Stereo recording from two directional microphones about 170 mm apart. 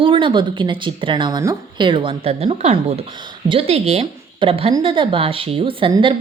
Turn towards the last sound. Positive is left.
turn(degrees=-30)  # may be behind; listen again after turning